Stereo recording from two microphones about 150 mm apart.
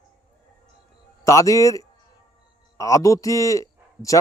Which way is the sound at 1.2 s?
20° left (ahead or behind).